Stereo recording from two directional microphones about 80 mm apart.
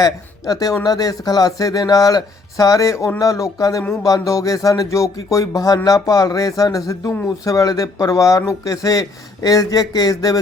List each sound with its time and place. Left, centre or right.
0.0 s speech: left